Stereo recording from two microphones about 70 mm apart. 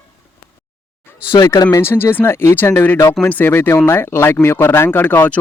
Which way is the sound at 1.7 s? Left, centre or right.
Left.